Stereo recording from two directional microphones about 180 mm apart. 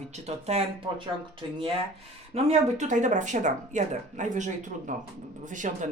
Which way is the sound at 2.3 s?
40° right (ahead or behind).